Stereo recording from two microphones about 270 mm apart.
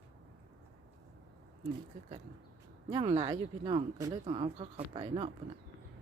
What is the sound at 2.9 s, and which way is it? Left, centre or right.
Speech, centre.